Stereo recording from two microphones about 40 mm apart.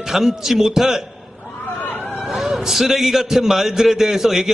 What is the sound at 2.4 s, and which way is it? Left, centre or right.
A man's voice, centre.